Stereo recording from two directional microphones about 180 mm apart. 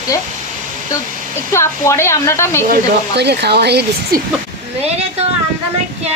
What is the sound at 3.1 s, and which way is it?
Speech, 70° right (ahead or behind).